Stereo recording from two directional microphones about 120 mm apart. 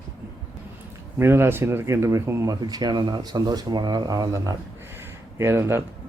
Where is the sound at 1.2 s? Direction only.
20° right (ahead or behind).